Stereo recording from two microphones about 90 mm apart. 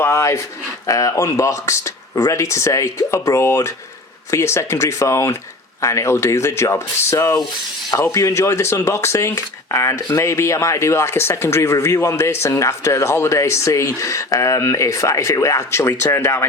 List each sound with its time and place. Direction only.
0.0 s speech: 30° left (ahead or behind)